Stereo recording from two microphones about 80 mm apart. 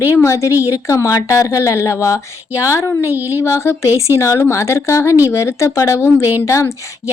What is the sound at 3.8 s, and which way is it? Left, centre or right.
Speech, right.